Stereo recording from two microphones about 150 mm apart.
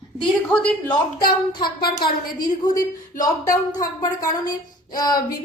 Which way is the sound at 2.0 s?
30° left (ahead or behind).